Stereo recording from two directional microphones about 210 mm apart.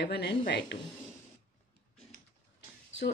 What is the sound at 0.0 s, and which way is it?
Speech, 55° left (ahead or behind).